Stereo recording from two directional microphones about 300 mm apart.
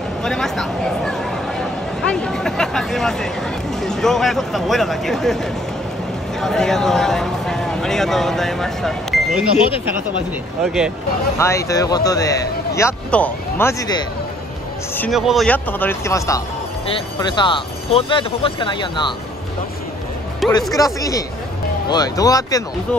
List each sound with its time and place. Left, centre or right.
0.2 s a sound: centre
2.0 s speech: centre
10.6 s speech: centre
15.0 s speech: centre
20.7 s speech: centre